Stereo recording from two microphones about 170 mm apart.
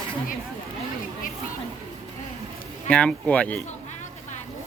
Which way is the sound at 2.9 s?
5° left (ahead or behind).